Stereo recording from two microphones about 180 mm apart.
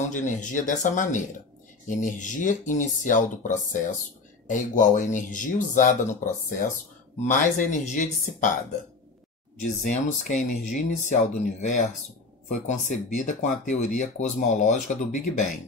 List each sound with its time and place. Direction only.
0.0 s speech: 45° left (ahead or behind)
9.6 s speech: 45° left (ahead or behind)